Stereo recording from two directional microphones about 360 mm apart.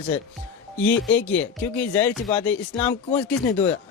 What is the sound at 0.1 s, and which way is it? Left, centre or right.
Speech, centre.